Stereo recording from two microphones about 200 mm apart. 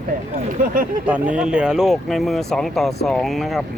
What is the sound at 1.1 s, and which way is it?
Speech, 5° right (ahead or behind).